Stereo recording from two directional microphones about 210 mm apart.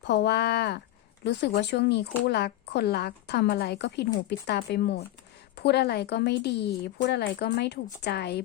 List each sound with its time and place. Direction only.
0.0 s speech: 55° left (ahead or behind)